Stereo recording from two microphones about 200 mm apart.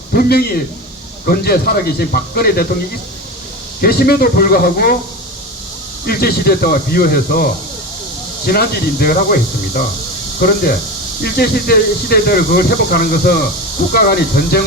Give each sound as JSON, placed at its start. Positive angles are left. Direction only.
{"t": 0.1, "sound": "speech", "side_deg": 50}
{"t": 3.8, "sound": "speech", "side_deg": 50}
{"t": 6.1, "sound": "speech", "side_deg": 50}
{"t": 8.4, "sound": "speech", "side_deg": 50}